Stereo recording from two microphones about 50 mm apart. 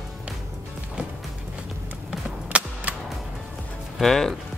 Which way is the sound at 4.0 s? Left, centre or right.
Centre.